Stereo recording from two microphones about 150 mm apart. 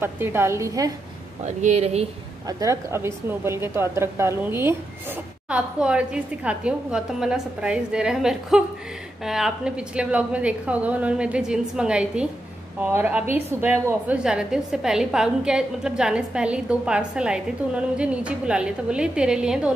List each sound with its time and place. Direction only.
0.0 s a woman's voice: 15° right (ahead or behind)
1.6 s speech: 50° right (ahead or behind)
2.4 s a woman's voice: 20° right (ahead or behind); by 19.7 s 5° right (ahead or behind)